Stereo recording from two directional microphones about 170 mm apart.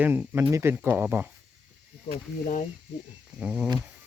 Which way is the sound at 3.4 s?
5° right (ahead or behind).